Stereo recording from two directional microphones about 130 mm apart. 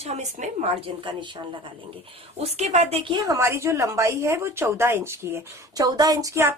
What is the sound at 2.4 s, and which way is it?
Speech, 60° right (ahead or behind).